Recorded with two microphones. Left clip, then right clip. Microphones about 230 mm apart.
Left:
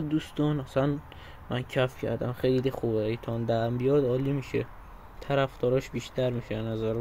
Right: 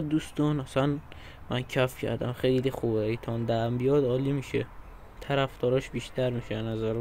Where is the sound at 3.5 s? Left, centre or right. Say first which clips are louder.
Even; centre.